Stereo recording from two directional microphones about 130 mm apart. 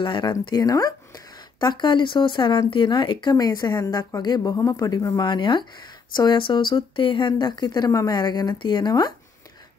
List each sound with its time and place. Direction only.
0.0 s speech: 35° left (ahead or behind)